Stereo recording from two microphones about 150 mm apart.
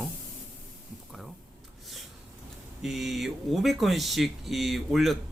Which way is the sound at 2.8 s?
Centre (ahead or behind).